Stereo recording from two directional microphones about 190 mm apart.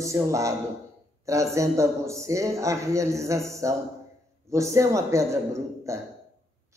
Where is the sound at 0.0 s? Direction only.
15° right (ahead or behind).